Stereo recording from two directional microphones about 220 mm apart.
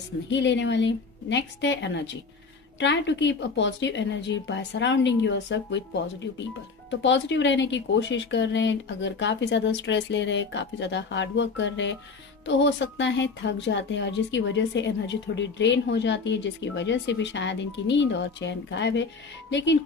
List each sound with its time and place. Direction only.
0.3 s a woman's voice: 55° left (ahead or behind)
7.0 s a woman's voice: 55° left (ahead or behind)